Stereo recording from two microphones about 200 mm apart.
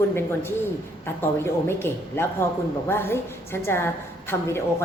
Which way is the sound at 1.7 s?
10° left (ahead or behind).